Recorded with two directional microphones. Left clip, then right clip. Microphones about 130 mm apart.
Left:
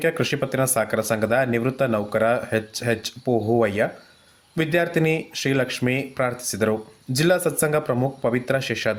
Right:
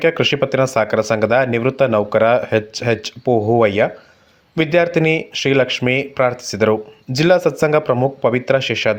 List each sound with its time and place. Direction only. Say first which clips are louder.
0.0 s speech: right 7 dB; 20° right (ahead or behind)